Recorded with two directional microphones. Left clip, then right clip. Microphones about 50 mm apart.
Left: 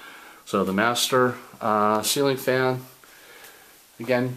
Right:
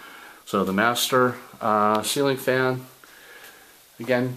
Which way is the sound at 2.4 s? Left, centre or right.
Left.